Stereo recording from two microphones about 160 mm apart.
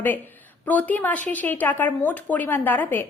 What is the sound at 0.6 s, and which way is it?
A woman's voice, 10° left (ahead or behind).